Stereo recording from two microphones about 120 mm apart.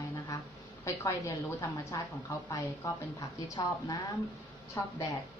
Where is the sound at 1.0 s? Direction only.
25° left (ahead or behind).